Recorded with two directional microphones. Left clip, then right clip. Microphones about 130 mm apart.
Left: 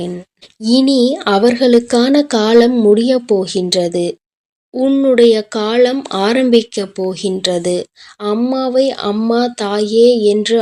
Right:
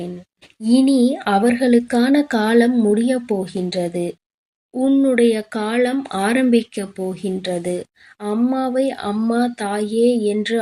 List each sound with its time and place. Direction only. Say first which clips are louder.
0.6 s speech: left 4 dB; 15° left (ahead or behind)